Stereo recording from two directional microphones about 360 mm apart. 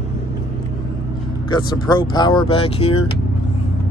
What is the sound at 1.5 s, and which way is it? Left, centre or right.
Speech, centre.